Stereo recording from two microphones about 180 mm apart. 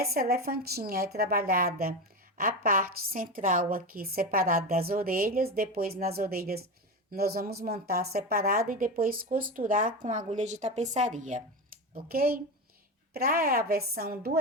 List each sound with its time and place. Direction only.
0.0 s a woman's voice: 60° right (ahead or behind)
11.9 s speech: 55° right (ahead or behind)